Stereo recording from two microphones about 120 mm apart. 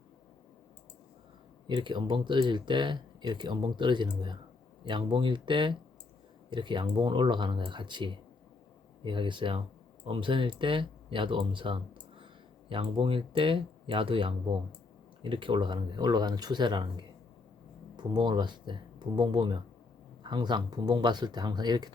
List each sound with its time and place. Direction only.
1.6 s speech: 40° right (ahead or behind)